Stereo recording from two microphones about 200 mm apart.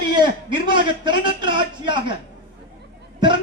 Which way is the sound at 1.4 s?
25° right (ahead or behind).